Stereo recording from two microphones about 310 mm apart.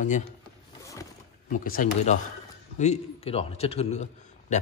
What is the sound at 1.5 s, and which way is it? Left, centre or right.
A man's voice, left.